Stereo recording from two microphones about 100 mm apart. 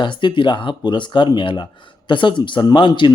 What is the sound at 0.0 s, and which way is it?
Speech, 55° left (ahead or behind).